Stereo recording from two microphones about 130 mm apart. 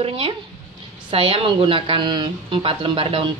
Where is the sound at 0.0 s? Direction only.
45° right (ahead or behind).